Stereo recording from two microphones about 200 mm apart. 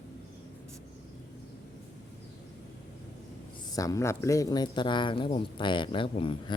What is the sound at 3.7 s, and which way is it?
Speech, 15° left (ahead or behind).